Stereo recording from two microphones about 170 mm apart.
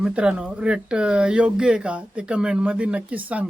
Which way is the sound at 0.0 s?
5° right (ahead or behind).